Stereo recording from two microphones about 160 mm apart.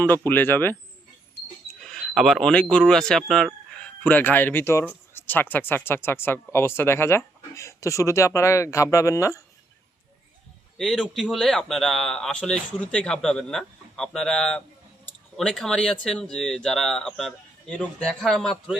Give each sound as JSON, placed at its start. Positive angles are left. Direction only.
{"t": 0.3, "sound": "speech", "side_deg": 10}
{"t": 1.8, "sound": "speech", "side_deg": 5}
{"t": 10.8, "sound": "a man's voice", "side_deg": 0}